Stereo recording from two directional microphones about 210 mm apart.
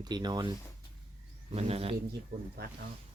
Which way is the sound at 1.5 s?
30° right (ahead or behind).